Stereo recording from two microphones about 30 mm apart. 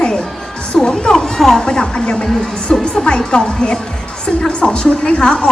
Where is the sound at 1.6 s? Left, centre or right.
Left.